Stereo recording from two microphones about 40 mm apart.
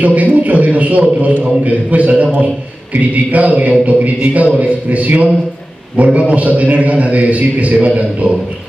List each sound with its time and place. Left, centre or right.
0.0 s a man's voice: right